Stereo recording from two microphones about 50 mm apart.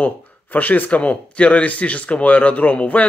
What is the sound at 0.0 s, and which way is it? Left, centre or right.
Speech, left.